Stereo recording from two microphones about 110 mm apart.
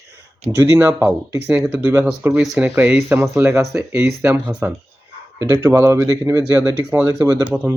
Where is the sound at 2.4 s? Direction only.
Centre (ahead or behind).